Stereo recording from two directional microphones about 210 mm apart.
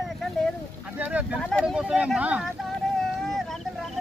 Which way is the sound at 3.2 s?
Centre (ahead or behind).